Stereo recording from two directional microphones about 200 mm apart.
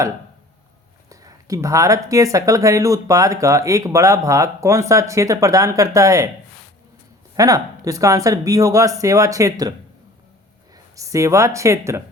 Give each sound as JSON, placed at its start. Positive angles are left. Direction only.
{"t": 1.1, "sound": "speech", "side_deg": -15}
{"t": 7.3, "sound": "speech", "side_deg": -15}
{"t": 10.9, "sound": "speech", "side_deg": -15}